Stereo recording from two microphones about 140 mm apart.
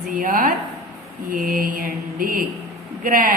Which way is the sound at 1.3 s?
80° right.